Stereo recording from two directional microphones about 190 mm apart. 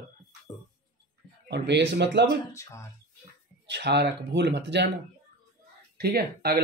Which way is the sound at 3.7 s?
65° right (ahead or behind).